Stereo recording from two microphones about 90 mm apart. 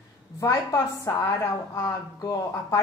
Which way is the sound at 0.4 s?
35° left (ahead or behind).